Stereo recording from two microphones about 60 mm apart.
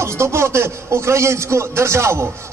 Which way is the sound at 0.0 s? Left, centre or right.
Right.